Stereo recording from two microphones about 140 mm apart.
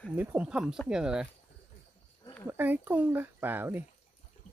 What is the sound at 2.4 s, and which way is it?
Speech, 15° right (ahead or behind).